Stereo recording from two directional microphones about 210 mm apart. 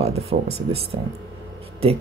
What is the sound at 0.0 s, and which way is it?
Speech, 30° right (ahead or behind).